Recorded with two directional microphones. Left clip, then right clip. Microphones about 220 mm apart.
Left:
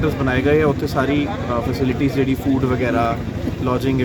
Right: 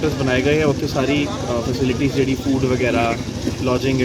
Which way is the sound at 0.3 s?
10° left (ahead or behind).